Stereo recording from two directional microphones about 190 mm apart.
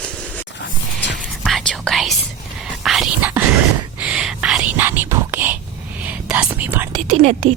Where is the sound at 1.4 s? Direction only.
Centre (ahead or behind).